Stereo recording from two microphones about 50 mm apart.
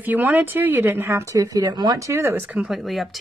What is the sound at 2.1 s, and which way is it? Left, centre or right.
Speech, right.